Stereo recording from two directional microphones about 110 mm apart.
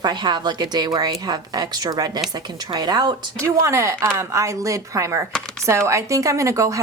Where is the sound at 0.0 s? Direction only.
40° right (ahead or behind).